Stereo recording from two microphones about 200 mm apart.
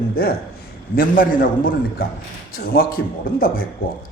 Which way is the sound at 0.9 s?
45° left (ahead or behind).